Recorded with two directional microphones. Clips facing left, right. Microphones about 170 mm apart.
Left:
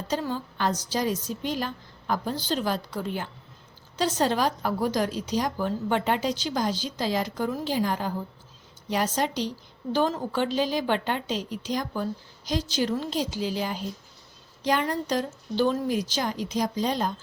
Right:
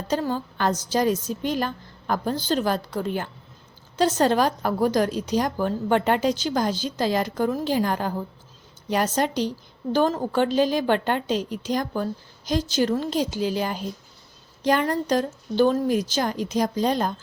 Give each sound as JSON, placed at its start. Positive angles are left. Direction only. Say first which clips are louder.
{"t": 0.1, "sound": "a woman's voice", "louder": "right 4 dB", "side_deg": -45}